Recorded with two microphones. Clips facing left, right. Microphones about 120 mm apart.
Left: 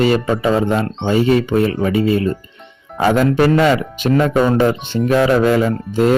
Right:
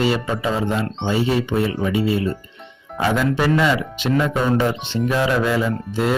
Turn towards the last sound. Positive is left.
turn(degrees=50)  # may be behind; listen again after turning